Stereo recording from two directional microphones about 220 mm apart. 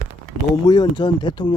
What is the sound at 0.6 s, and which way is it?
Speech, 20° left (ahead or behind).